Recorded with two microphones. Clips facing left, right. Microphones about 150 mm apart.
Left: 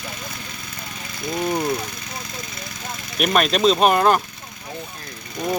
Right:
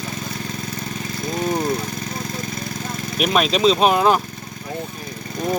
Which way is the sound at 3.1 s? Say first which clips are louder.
Even; centre (ahead or behind).